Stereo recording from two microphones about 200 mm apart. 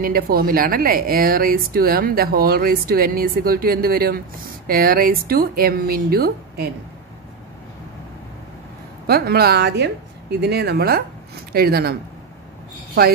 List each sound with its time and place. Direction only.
0.0 s speech: 50° right (ahead or behind)
9.0 s speech: 50° right (ahead or behind)